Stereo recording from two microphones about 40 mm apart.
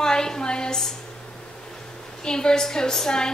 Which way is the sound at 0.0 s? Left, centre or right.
Centre.